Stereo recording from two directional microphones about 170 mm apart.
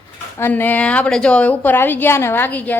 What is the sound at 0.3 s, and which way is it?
A woman's voice, 10° left (ahead or behind).